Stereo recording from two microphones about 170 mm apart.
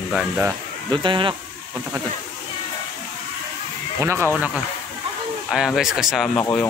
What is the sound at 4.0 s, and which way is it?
Speech, 15° right (ahead or behind).